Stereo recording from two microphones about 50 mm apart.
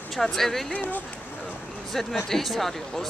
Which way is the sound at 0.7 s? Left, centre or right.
Left.